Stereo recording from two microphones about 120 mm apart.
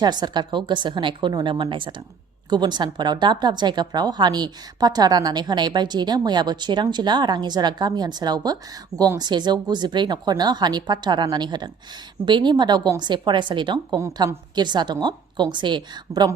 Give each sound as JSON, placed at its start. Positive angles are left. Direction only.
{"t": 0.0, "sound": "a woman's voice", "side_deg": -35}